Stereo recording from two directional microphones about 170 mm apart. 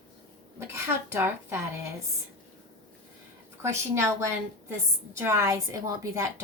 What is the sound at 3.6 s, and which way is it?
A woman's voice, 15° right (ahead or behind).